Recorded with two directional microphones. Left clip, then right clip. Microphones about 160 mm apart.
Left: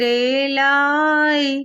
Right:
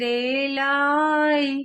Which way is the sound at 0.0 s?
25° left (ahead or behind).